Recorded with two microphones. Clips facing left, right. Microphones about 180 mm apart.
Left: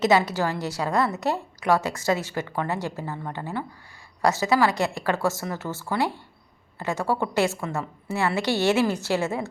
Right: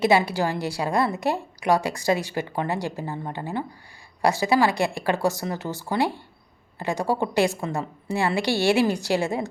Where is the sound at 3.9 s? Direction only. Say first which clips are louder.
Even; 15° right (ahead or behind).